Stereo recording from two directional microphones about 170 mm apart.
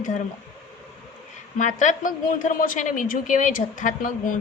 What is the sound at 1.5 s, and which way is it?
A woman's voice, 45° left (ahead or behind).